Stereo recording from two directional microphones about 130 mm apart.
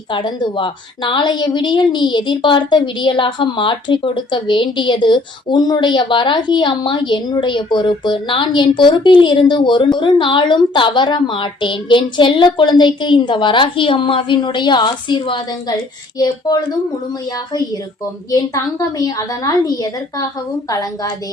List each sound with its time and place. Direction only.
0.1 s a woman's voice: 35° left (ahead or behind)
18.3 s a woman's voice: 25° left (ahead or behind)